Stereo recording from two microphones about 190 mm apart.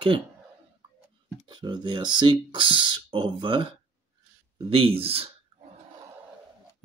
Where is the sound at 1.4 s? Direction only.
25° right (ahead or behind).